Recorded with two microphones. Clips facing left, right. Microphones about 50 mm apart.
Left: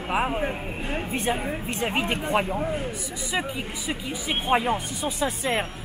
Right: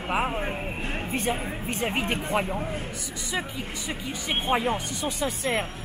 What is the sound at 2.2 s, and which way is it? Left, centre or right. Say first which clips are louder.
Speech: left 3 dB; centre.